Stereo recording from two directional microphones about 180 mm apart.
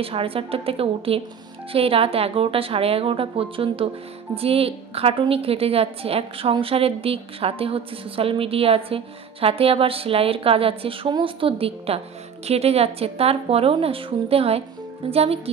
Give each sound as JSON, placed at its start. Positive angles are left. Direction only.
{"t": 0.0, "sound": "a woman's voice", "side_deg": -30}